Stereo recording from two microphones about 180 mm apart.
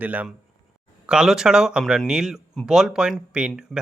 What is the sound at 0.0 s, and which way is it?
Speech, 10° right (ahead or behind).